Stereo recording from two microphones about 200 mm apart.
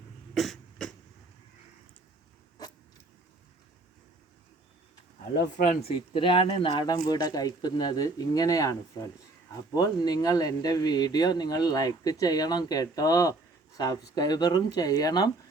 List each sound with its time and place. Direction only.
0.3 s cough: centre (ahead or behind)
5.5 s speech: 45° left (ahead or behind)
6.1 s speech: 25° left (ahead or behind)
9.7 s speech: 20° left (ahead or behind)